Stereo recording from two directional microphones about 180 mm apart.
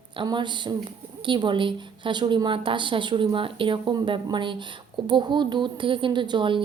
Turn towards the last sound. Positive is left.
turn(degrees=-25)  # may be behind; listen again after turning